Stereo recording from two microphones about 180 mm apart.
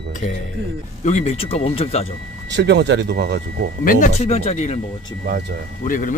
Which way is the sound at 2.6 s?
70° right (ahead or behind).